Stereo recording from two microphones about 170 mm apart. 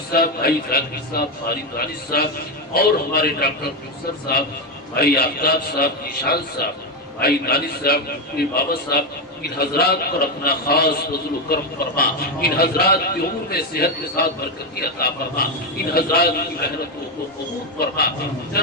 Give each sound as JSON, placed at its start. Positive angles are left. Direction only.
{"t": 0.1, "sound": "a man's voice", "side_deg": 60}
{"t": 4.9, "sound": "a man's voice", "side_deg": 65}
{"t": 17.7, "sound": "a man's voice", "side_deg": 65}